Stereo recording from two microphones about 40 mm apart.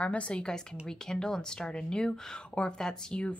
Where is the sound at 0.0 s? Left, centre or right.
Left.